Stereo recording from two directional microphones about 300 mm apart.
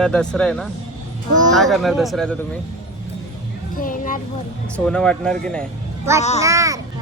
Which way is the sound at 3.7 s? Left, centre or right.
Left.